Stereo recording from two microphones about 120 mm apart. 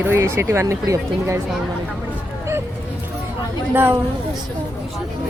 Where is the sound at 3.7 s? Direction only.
15° right (ahead or behind).